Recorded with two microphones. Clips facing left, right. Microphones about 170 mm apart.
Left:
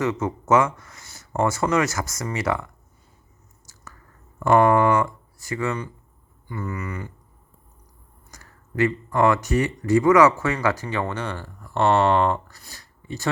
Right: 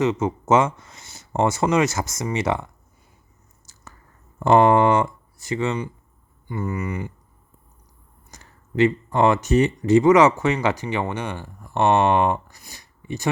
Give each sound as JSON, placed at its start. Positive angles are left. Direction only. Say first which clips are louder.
{"t": 0.0, "sound": "speech", "louder": "right 3 dB", "side_deg": -20}
{"t": 3.7, "sound": "squish", "louder": "left 2 dB", "side_deg": -25}
{"t": 4.4, "sound": "speech", "louder": "right 2 dB", "side_deg": -25}
{"t": 8.3, "sound": "speech", "louder": "right 4 dB", "side_deg": -25}